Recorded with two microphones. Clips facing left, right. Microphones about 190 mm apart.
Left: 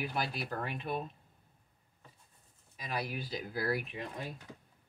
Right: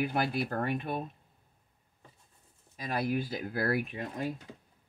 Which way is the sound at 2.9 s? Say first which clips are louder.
Right 6 dB; 50° right (ahead or behind).